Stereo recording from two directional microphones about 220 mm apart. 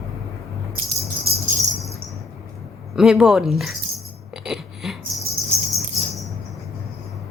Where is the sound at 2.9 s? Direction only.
Centre (ahead or behind).